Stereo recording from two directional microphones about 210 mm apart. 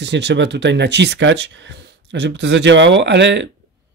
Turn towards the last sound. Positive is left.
turn(degrees=-55)  # may be behind; listen again after turning